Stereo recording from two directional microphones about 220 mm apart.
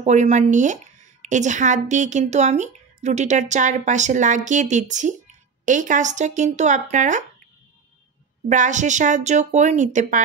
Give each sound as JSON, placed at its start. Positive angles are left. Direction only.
{"t": 0.0, "sound": "speech", "side_deg": -30}
{"t": 8.5, "sound": "speech", "side_deg": -35}